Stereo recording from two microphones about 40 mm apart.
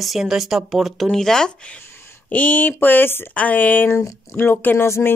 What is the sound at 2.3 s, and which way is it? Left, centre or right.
Speech, left.